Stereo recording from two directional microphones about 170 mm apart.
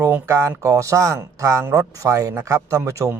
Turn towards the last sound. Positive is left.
turn(degrees=-15)  # may be behind; listen again after turning